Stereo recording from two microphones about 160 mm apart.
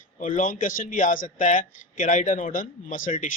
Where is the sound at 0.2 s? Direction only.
55° left (ahead or behind).